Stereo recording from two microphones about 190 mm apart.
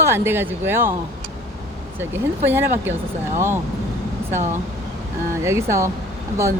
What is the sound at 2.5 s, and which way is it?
Speech, 10° right (ahead or behind).